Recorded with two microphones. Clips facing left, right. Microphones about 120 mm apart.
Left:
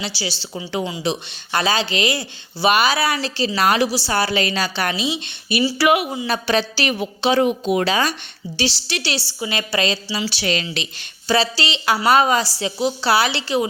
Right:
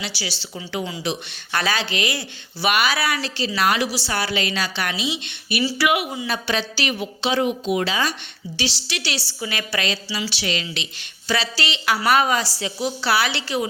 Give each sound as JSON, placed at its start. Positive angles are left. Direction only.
{"t": 0.0, "sound": "a woman's voice", "side_deg": 30}
{"t": 8.5, "sound": "speech", "side_deg": 35}
{"t": 11.3, "sound": "a woman's voice", "side_deg": 30}